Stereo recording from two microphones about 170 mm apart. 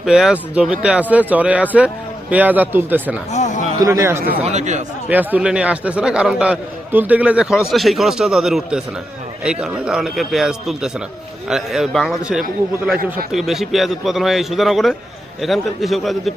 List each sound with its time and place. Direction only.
0.0 s speech: 5° right (ahead or behind)
3.3 s a sound: 45° left (ahead or behind)
3.8 s speech: 20° right (ahead or behind)
4.4 s a man's voice: 45° right (ahead or behind)
5.0 s a man's voice: 10° right (ahead or behind)